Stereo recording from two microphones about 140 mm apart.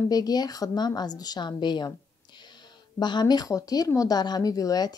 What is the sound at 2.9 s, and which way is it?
A woman's voice, 30° left (ahead or behind).